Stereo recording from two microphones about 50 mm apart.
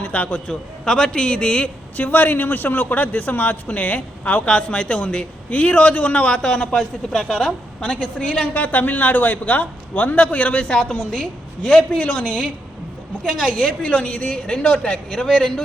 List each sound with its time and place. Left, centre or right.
0.0 s a man's voice: left
8.6 s a man's voice: left
13.4 s speech: left